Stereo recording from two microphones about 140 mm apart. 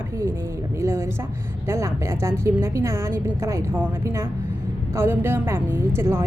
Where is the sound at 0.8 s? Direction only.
20° right (ahead or behind).